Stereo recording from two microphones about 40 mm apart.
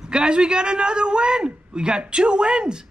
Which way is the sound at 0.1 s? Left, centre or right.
Right.